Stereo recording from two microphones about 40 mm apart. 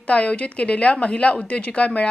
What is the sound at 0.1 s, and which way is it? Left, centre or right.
Speech, left.